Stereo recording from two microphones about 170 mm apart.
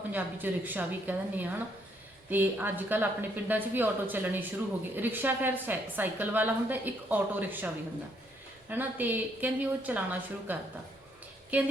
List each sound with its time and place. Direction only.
0.1 s a woman's voice: 10° right (ahead or behind)
8.7 s a woman's voice: 10° right (ahead or behind)